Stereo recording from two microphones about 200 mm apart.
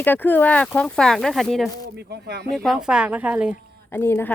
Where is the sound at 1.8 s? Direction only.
55° right (ahead or behind).